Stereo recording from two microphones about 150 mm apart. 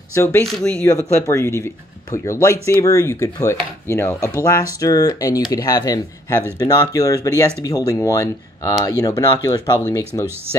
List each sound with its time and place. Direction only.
0.1 s speech: 15° left (ahead or behind)
0.4 s speech: 5° left (ahead or behind)
1.2 s speech: 20° left (ahead or behind)